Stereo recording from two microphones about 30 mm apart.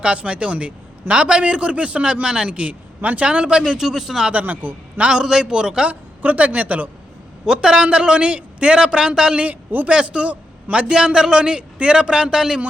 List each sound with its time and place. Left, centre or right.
0.3 s a woman's voice: right
2.2 s speech: right
2.5 s a man's voice: right
3.0 s speech: right
3.2 s a man's voice: right
3.8 s a man's voice: centre
4.3 s a man's voice: right
4.9 s a man's voice: right
5.9 s a woman's voice: right
7.4 s a man's voice: right
9.4 s a man's voice: right
9.9 s a man's voice: right